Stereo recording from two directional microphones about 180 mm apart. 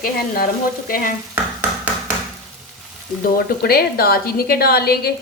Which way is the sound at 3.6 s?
60° left (ahead or behind).